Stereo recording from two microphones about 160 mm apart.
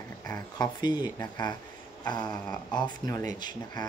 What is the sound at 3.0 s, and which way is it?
Speech, 25° left (ahead or behind).